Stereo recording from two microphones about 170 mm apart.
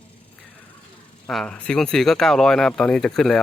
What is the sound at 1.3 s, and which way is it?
Speech, 5° left (ahead or behind).